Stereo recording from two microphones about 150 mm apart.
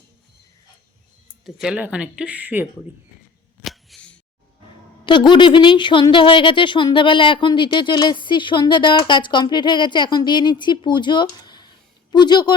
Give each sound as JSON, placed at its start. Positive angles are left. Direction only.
{"t": 1.5, "sound": "speech", "side_deg": -5}
{"t": 3.6, "sound": "a sound", "side_deg": 0}
{"t": 5.0, "sound": "speech", "side_deg": 30}